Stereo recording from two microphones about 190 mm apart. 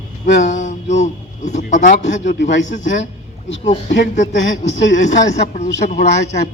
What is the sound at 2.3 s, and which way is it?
Speech, 70° left (ahead or behind).